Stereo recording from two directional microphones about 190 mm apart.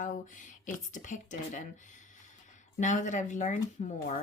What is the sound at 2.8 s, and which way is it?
Speech, 40° left (ahead or behind).